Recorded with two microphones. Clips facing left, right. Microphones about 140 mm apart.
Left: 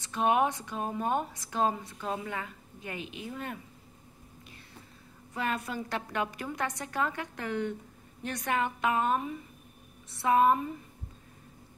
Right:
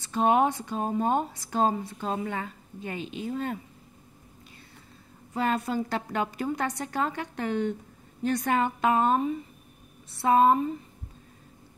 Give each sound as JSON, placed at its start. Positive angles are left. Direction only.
{"t": 0.0, "sound": "speech", "side_deg": -30}
{"t": 5.3, "sound": "speech", "side_deg": -30}